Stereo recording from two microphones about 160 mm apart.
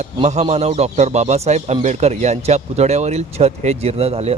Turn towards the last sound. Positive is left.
turn(degrees=-40)  # may be behind; listen again after turning